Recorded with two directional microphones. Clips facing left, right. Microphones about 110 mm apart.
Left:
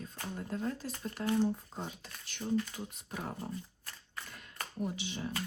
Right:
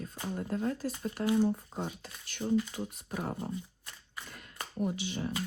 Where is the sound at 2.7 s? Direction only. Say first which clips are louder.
Right 5 dB; 50° right (ahead or behind).